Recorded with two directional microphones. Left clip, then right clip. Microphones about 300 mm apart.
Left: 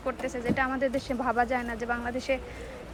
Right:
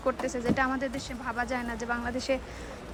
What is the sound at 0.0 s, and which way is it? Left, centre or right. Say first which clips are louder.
A woman's voice: right 2 dB; centre.